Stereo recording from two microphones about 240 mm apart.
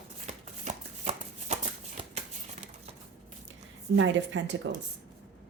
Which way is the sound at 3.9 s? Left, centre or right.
Right.